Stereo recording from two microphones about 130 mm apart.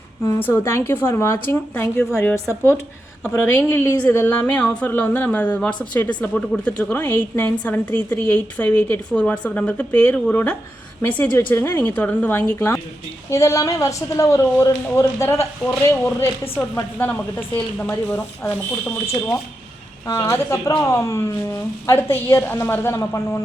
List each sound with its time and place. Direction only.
0.3 s a woman's voice: 15° left (ahead or behind)
20.1 s a woman's voice: 20° left (ahead or behind)